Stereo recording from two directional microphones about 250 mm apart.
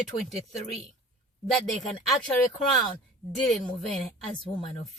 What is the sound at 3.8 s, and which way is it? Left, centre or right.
Speech, centre.